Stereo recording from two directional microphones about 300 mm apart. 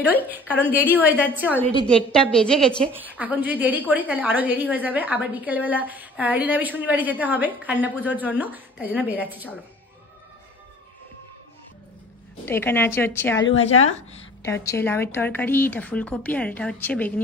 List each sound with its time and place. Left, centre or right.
0.0 s a woman's voice: centre
12.4 s speech: centre
13.4 s a woman's voice: left
14.4 s speech: centre